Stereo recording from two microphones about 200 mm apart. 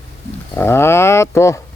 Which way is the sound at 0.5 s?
10° left (ahead or behind).